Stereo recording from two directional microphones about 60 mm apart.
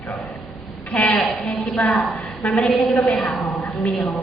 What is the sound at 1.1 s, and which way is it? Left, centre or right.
Speech, centre.